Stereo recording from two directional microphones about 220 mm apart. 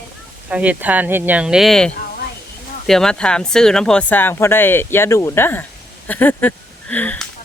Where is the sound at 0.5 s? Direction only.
5° right (ahead or behind).